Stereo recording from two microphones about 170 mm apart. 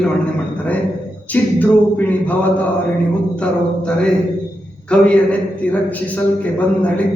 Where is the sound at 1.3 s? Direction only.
10° left (ahead or behind).